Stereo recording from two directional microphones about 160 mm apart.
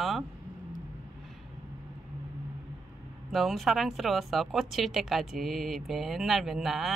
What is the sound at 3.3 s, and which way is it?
Speech, centre (ahead or behind).